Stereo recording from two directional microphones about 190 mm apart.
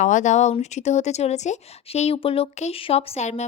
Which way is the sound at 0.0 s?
40° left (ahead or behind).